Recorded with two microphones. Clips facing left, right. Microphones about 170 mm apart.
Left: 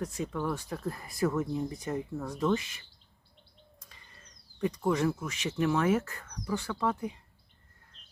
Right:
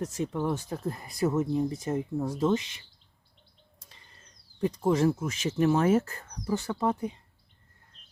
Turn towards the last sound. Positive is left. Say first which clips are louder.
# right 3 dB
turn(degrees=-25)  # may be behind; listen again after turning